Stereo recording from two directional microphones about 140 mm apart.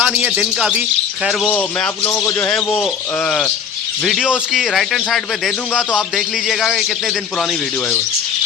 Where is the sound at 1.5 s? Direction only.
15° left (ahead or behind).